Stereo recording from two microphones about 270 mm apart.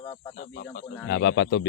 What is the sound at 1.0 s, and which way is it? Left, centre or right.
Speech, left.